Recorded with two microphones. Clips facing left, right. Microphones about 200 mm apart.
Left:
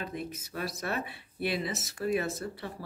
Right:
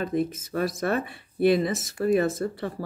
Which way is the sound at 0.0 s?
45° right (ahead or behind).